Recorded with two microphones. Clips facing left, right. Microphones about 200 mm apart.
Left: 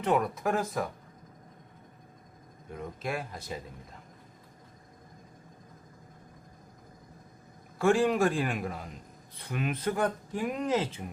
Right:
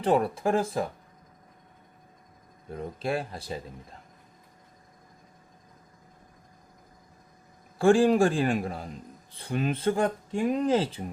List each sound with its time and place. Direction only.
0.0 s speech: 30° right (ahead or behind)
2.6 s speech: 35° right (ahead or behind)
7.8 s speech: 30° right (ahead or behind)